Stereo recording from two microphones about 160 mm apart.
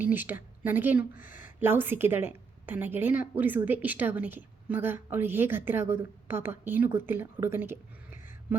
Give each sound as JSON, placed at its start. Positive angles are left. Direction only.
{"t": 0.0, "sound": "a woman's voice", "side_deg": -10}